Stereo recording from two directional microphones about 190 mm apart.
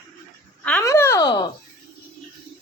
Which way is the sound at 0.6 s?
5° left (ahead or behind).